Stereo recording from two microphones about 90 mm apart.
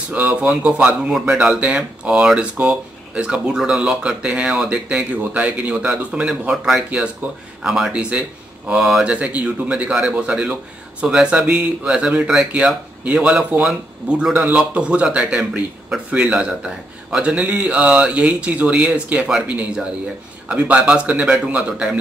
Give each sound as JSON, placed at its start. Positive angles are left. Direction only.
{"t": 0.1, "sound": "a man's voice", "side_deg": -15}
{"t": 7.2, "sound": "a man's voice", "side_deg": -15}
{"t": 7.6, "sound": "a man's voice", "side_deg": -5}